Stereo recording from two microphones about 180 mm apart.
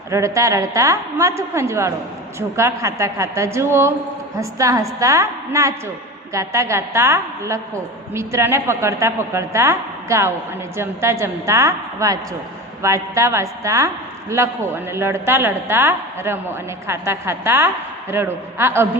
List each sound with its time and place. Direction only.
0.1 s a woman's voice: 15° right (ahead or behind)